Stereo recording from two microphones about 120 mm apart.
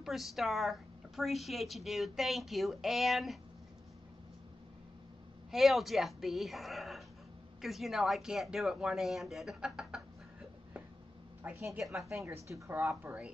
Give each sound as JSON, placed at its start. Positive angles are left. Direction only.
{"t": 0.0, "sound": "a woman's voice", "side_deg": 0}
{"t": 5.5, "sound": "a woman's voice", "side_deg": 0}
{"t": 11.4, "sound": "a woman's voice", "side_deg": -15}
{"t": 11.8, "sound": "a woman's voice", "side_deg": 0}
{"t": 12.4, "sound": "speech", "side_deg": -25}